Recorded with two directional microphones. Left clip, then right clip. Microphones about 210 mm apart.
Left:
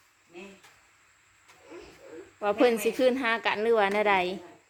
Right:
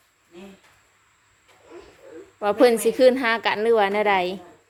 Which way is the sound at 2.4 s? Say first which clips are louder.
Right 6 dB; 20° right (ahead or behind).